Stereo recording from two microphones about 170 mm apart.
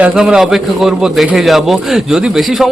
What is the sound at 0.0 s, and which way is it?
A man's voice, 5° right (ahead or behind).